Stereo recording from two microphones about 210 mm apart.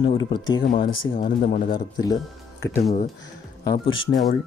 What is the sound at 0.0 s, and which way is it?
Speech, 25° left (ahead or behind).